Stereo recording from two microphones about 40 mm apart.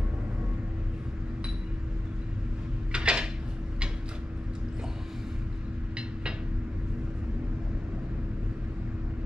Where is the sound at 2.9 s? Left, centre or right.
Right.